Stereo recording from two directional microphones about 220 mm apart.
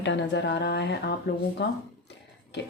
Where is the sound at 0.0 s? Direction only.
55° left (ahead or behind).